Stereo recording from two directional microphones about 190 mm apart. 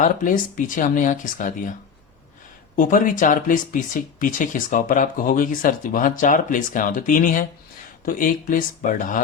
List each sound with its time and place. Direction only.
0.0 s speech: 45° left (ahead or behind)
2.7 s speech: 45° left (ahead or behind)